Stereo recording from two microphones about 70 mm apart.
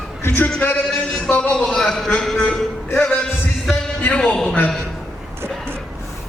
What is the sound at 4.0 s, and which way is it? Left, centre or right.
Speech, centre.